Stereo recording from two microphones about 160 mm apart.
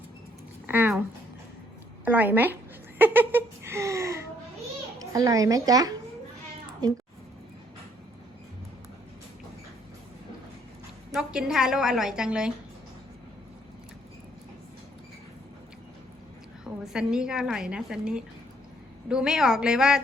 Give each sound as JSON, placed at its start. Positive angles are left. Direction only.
{"t": 0.7, "sound": "a woman's voice", "side_deg": -10}
{"t": 2.0, "sound": "a woman's voice", "side_deg": -10}
{"t": 3.0, "sound": "a sound", "side_deg": -10}
{"t": 5.1, "sound": "a woman's voice", "side_deg": -20}
{"t": 11.1, "sound": "a woman's voice", "side_deg": -5}
{"t": 16.8, "sound": "a woman's voice", "side_deg": -5}